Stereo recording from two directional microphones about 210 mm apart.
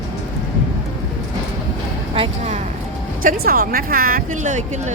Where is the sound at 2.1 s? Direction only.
25° right (ahead or behind).